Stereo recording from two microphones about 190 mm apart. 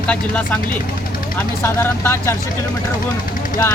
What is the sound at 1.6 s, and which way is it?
Speech, 15° left (ahead or behind).